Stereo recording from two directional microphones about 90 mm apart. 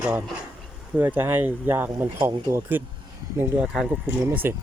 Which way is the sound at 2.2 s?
50° right (ahead or behind).